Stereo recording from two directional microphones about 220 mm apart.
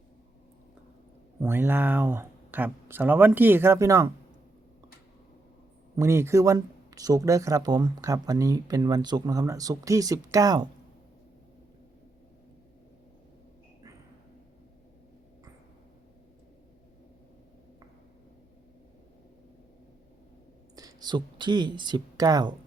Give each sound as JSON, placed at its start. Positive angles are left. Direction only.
{"t": 1.4, "sound": "speech", "side_deg": -10}
{"t": 6.0, "sound": "speech", "side_deg": -10}
{"t": 20.7, "sound": "speech", "side_deg": -15}